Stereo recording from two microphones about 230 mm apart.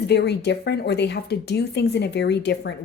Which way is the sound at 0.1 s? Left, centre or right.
Left.